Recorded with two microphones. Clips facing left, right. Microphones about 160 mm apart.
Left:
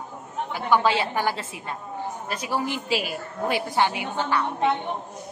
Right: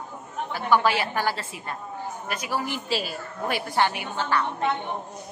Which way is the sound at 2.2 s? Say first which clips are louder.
Left 1 dB; 30° left (ahead or behind).